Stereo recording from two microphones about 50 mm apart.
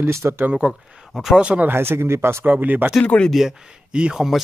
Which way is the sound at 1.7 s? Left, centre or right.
Right.